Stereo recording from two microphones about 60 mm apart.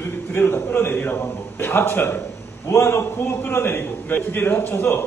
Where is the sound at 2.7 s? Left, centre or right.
Left.